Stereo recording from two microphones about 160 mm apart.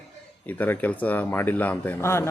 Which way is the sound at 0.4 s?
10° left (ahead or behind).